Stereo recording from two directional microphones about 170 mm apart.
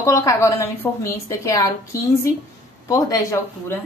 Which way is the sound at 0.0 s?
20° left (ahead or behind).